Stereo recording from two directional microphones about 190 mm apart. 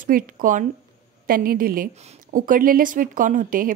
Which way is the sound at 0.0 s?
45° right (ahead or behind).